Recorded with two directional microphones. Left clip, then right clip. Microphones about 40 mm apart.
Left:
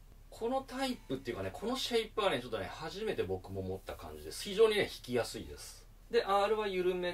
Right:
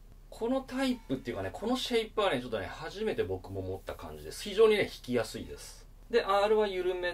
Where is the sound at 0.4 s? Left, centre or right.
Right.